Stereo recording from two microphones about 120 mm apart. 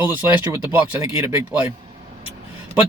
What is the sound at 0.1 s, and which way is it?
Speech, 20° right (ahead or behind).